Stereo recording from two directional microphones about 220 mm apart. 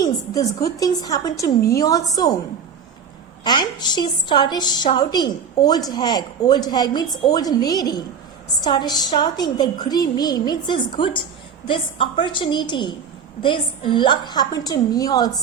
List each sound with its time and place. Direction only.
0.0 s a woman's voice: 15° left (ahead or behind)
3.4 s a woman's voice: 20° left (ahead or behind)